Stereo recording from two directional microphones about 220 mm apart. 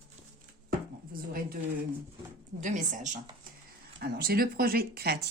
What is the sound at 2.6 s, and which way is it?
Speech, 35° right (ahead or behind).